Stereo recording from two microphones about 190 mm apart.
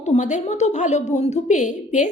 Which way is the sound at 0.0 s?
40° left (ahead or behind).